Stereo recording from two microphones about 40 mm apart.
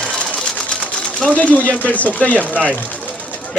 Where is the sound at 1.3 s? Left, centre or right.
Left.